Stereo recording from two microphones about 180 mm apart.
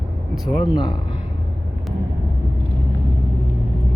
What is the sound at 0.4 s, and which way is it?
Speech, 25° left (ahead or behind).